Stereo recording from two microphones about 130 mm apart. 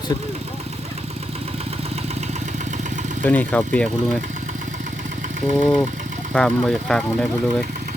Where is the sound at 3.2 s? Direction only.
10° left (ahead or behind).